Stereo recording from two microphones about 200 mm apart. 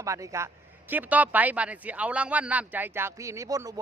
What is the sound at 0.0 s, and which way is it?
A man's voice, 15° right (ahead or behind).